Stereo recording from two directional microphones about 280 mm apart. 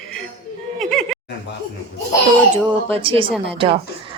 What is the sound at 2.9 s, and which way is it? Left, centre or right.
Speech, centre.